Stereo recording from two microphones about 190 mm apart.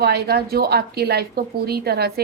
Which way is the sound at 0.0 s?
60° right (ahead or behind).